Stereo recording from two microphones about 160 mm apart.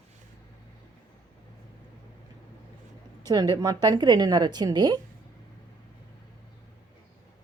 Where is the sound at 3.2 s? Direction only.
25° right (ahead or behind).